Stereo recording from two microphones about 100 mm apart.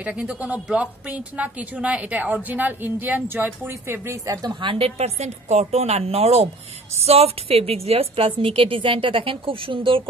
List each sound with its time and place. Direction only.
0.0 s a woman's voice: 15° right (ahead or behind); by 10.0 s 60° right (ahead or behind)